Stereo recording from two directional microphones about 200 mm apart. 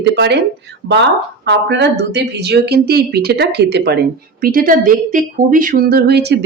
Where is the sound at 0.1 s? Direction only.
60° right (ahead or behind).